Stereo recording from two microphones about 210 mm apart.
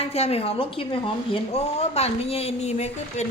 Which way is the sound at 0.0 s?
30° left (ahead or behind).